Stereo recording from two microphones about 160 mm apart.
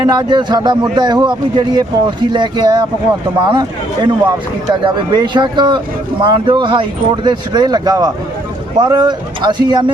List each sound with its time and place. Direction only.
0.0 s speech: 25° right (ahead or behind)